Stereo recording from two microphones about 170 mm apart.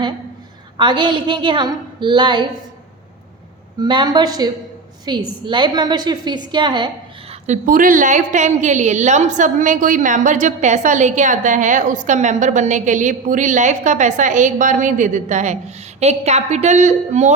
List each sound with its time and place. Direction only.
0.8 s a woman's voice: 30° right (ahead or behind)
3.8 s a woman's voice: 25° right (ahead or behind)
7.4 s a woman's voice: 50° right (ahead or behind)